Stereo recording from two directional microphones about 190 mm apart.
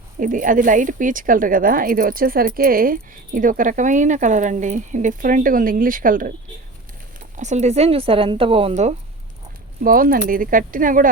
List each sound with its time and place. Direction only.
0.2 s speech: 45° right (ahead or behind)
9.8 s speech: 50° right (ahead or behind)